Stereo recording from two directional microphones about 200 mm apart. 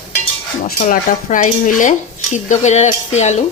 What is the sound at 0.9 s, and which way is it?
Stir, 40° left (ahead or behind).